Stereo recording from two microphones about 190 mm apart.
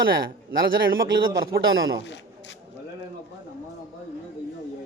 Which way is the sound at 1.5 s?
90° right.